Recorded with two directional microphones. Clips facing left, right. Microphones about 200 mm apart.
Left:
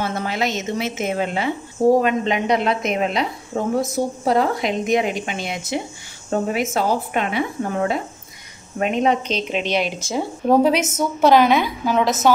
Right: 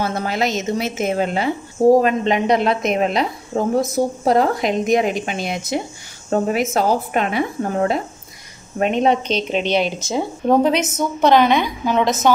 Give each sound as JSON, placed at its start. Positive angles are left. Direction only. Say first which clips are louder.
{"t": 0.0, "sound": "a woman's voice", "louder": "right 2 dB", "side_deg": -40}
{"t": 9.9, "sound": "speech", "louder": "right 2 dB", "side_deg": -20}
{"t": 10.4, "sound": "a woman's voice", "louder": "even", "side_deg": 5}